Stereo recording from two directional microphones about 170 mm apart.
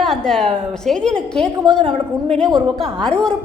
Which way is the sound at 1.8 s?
35° right (ahead or behind).